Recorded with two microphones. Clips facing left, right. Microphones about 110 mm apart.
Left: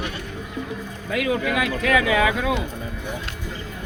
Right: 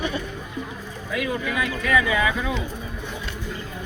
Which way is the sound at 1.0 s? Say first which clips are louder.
Left 4 dB; 90° left.